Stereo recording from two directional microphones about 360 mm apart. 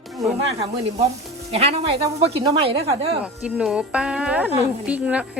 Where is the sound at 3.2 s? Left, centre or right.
Centre.